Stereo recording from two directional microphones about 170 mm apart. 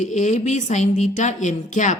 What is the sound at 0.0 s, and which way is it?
Speech, 45° left (ahead or behind).